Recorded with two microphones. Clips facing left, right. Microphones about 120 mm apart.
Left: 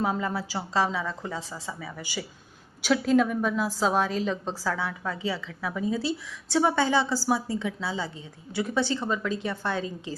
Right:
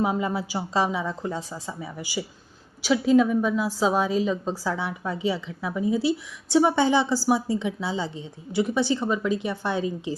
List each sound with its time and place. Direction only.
0.0 s a woman's voice: 15° right (ahead or behind)
2.9 s a woman's voice: 5° right (ahead or behind)
4.6 s a woman's voice: 20° right (ahead or behind)